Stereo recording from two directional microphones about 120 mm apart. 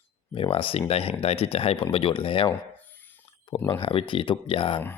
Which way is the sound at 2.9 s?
15° left (ahead or behind).